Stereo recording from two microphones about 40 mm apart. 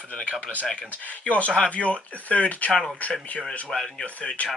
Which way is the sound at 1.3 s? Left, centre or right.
Left.